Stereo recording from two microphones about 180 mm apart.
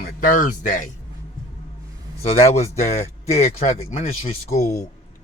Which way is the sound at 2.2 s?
35° left (ahead or behind).